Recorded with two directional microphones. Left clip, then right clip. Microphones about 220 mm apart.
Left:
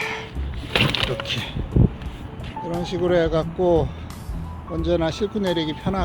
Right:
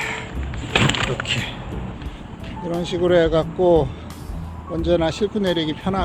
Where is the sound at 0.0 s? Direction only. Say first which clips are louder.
Right 1 dB; 25° left (ahead or behind).